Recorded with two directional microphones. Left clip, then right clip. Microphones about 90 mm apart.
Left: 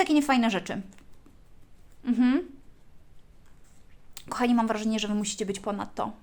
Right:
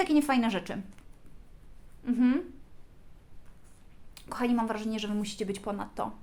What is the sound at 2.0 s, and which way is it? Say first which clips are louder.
Speech: left 3 dB; 90° left.